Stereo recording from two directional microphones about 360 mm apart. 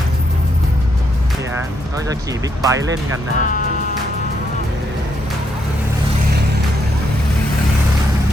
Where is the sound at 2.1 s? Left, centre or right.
Centre.